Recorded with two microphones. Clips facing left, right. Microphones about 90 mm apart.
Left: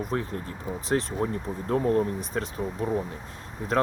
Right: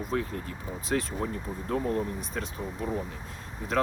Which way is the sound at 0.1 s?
35° left (ahead or behind).